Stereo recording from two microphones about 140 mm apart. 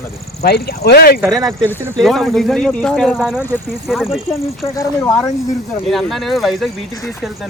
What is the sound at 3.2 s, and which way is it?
Speech, 5° right (ahead or behind).